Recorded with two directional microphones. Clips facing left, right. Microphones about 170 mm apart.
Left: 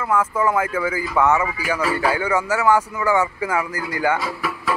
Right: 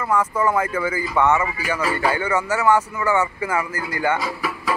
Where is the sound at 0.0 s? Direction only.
5° left (ahead or behind).